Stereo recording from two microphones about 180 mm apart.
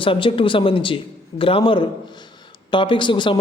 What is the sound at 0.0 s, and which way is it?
A man's voice, 30° left (ahead or behind).